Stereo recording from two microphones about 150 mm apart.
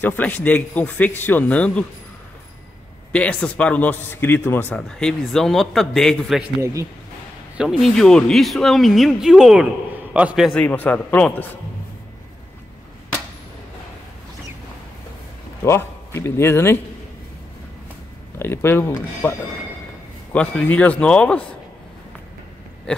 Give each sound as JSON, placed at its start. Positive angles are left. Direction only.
{"t": 0.0, "sound": "a man's voice", "side_deg": 10}
{"t": 3.1, "sound": "a man's voice", "side_deg": 10}
{"t": 6.6, "sound": "speech", "side_deg": -20}
{"t": 7.5, "sound": "speech", "side_deg": -5}
{"t": 10.6, "sound": "a man's voice", "side_deg": 10}
{"t": 15.6, "sound": "a man's voice", "side_deg": 15}
{"t": 18.4, "sound": "a man's voice", "side_deg": 15}
{"t": 20.3, "sound": "a man's voice", "side_deg": 10}
{"t": 22.9, "sound": "a sound", "side_deg": 5}